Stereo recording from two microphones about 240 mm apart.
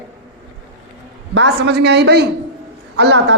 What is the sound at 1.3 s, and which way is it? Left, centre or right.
A man's voice, right.